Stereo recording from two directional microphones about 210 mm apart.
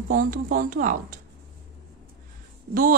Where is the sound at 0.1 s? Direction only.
40° right (ahead or behind).